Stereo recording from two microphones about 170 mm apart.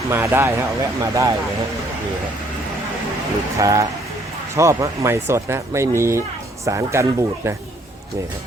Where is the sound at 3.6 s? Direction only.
20° right (ahead or behind).